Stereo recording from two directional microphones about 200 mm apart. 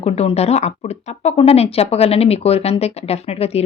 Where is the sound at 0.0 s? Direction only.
30° left (ahead or behind).